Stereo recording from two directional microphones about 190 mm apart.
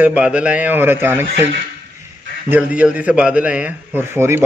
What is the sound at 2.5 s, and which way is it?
A man's voice, 10° right (ahead or behind).